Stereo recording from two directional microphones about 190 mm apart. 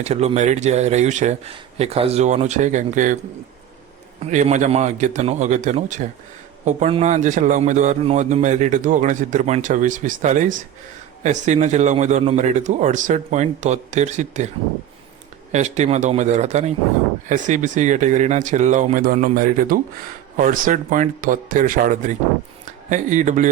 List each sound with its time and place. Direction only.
0.0 s a man's voice: 35° right (ahead or behind)
4.2 s a man's voice: 35° right (ahead or behind)
15.5 s a man's voice: 35° right (ahead or behind)